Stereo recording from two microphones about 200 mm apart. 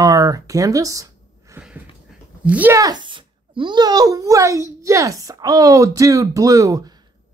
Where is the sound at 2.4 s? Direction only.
10° right (ahead or behind).